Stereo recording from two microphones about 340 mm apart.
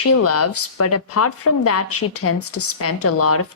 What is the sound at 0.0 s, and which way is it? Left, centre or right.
Speech, left.